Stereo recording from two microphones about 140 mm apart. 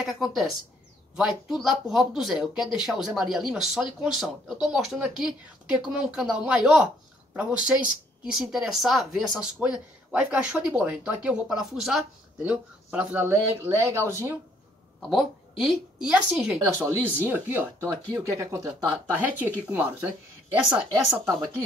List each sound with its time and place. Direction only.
0.0 s speech: centre (ahead or behind); by 14.3 s 20° right (ahead or behind)
15.0 s speech: 5° right (ahead or behind)
16.5 s speech: 20° right (ahead or behind)
19.2 s speech: 10° right (ahead or behind)